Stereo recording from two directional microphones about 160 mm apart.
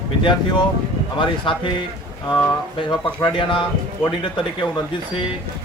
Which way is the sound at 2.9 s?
30° left (ahead or behind).